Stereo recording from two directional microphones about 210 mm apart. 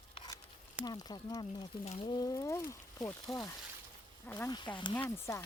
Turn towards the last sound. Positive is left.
turn(degrees=15)  # may be behind; listen again after turning